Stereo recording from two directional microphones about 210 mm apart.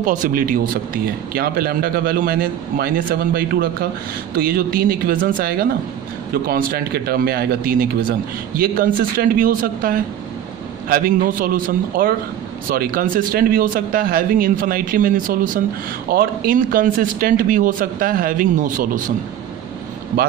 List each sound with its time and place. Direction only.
0.0 s speech: 40° right (ahead or behind)